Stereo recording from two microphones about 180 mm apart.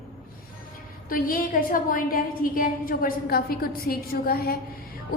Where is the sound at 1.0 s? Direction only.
50° left (ahead or behind).